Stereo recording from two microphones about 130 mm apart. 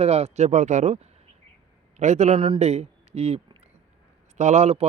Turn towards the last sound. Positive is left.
turn(degrees=-60)  # may be behind; listen again after turning